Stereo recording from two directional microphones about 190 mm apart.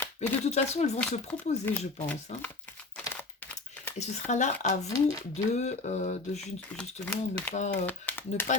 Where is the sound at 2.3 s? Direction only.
35° left (ahead or behind).